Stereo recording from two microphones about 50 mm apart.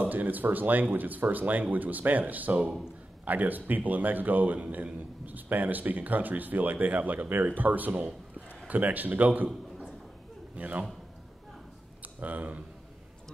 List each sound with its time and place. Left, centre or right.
0.0 s a man's voice: right
10.5 s a man's voice: right
12.0 s speech: right